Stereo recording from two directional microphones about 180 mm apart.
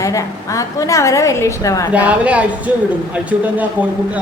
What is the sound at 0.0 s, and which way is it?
A woman's voice, 15° left (ahead or behind).